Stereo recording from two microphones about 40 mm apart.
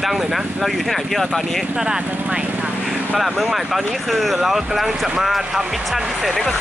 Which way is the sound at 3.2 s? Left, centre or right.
Centre.